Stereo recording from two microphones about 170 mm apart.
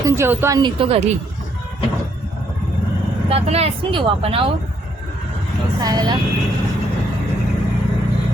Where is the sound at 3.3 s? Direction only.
35° right (ahead or behind).